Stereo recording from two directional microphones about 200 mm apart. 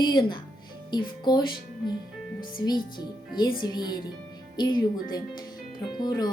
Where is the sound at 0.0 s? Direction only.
25° left (ahead or behind).